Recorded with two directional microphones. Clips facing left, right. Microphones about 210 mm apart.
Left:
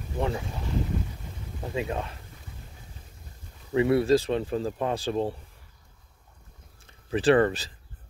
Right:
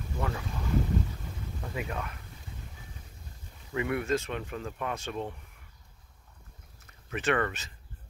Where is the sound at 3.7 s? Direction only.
30° left (ahead or behind).